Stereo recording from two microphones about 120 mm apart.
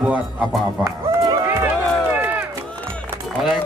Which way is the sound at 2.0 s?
15° right (ahead or behind).